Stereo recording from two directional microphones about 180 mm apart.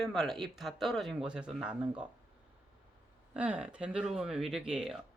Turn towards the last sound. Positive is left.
turn(degrees=0)  # may be behind; listen again after turning